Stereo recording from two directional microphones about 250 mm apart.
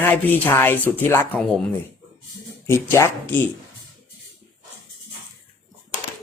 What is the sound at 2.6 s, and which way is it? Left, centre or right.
Speech, centre.